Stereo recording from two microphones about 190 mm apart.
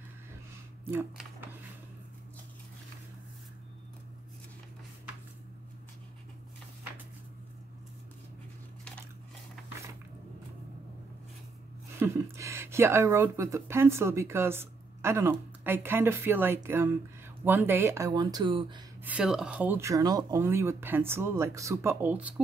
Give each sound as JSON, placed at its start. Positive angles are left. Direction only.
{"t": 12.0, "sound": "speech", "side_deg": -15}
{"t": 19.0, "sound": "speech", "side_deg": -5}